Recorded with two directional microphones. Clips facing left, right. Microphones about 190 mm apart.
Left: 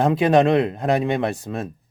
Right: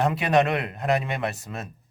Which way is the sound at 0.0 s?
25° left (ahead or behind).